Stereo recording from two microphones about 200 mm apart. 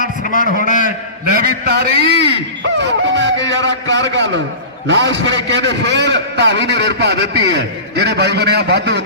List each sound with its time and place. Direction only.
0.0 s a sound: 40° left (ahead or behind)
0.7 s a man's voice: 40° left (ahead or behind)
1.3 s a sound: 50° right (ahead or behind)
2.0 s a man's voice: 30° left (ahead or behind)
2.7 s music: 65° right (ahead or behind)
3.5 s a man's voice: 65° right (ahead or behind)